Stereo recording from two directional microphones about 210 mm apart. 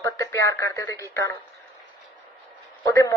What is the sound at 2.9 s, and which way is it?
Speech, 15° left (ahead or behind).